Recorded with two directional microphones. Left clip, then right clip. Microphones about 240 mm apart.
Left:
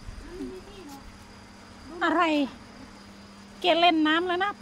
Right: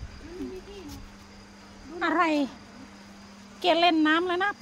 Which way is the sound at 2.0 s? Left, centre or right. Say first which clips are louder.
Left 1 dB; centre.